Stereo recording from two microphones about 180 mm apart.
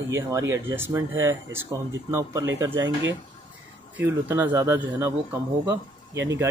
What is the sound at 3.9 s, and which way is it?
Speech, 10° right (ahead or behind).